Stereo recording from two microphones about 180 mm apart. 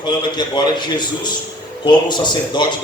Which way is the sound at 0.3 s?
25° left (ahead or behind).